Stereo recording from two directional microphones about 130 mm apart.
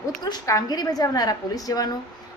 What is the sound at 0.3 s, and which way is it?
A woman's voice, 25° left (ahead or behind).